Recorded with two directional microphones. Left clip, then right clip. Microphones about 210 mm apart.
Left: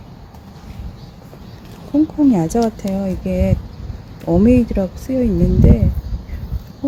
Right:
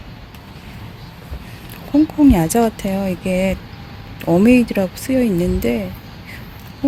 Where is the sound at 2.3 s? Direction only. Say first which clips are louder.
Right 1 dB; centre (ahead or behind).